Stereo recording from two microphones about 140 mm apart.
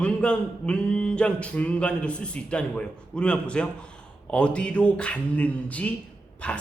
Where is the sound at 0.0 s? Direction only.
10° left (ahead or behind).